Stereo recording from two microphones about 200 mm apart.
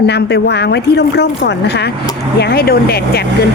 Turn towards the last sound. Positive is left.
turn(degrees=50)  # may be behind; listen again after turning